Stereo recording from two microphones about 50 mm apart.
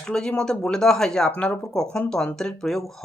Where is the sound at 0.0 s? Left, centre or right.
Centre.